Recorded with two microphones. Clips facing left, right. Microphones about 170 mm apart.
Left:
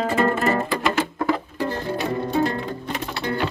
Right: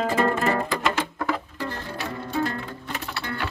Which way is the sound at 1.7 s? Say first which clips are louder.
Left 9 dB; 20° left (ahead or behind).